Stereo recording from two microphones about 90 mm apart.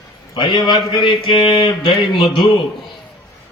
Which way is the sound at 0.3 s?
55° left (ahead or behind).